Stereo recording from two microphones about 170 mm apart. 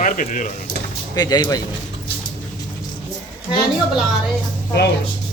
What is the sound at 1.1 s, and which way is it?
Speech, 25° left (ahead or behind).